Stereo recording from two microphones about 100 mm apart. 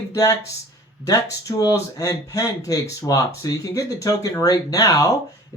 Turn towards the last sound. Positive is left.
turn(degrees=35)  # may be behind; listen again after turning